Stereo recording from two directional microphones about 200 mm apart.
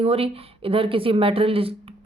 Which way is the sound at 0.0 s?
30° right (ahead or behind).